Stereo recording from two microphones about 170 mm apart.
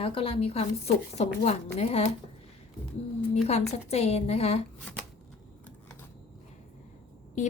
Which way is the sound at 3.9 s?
40° left (ahead or behind).